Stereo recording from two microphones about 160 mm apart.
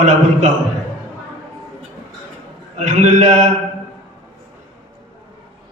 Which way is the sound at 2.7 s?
50° right (ahead or behind).